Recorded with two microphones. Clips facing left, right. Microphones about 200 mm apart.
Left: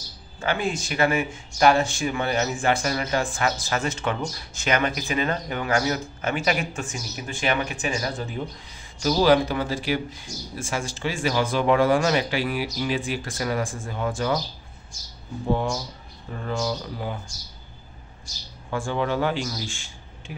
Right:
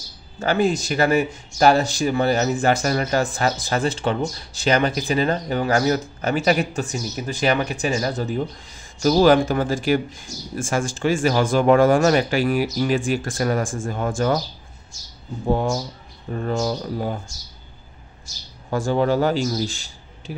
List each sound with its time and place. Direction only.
0.4 s speech: 40° right (ahead or behind)
16.3 s speech: 45° right (ahead or behind)
18.7 s a man's voice: 40° right (ahead or behind)